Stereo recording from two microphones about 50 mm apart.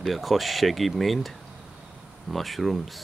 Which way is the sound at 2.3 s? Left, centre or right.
Centre.